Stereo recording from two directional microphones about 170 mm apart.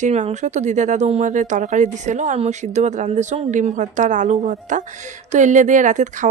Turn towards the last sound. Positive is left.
turn(degrees=-45)  # may be behind; listen again after turning